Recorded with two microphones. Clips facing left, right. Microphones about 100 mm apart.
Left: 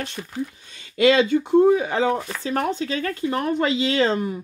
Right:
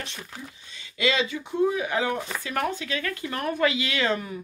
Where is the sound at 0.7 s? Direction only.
50° left (ahead or behind).